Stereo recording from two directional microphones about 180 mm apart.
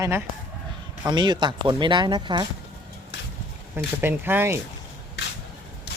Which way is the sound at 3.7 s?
10° right (ahead or behind).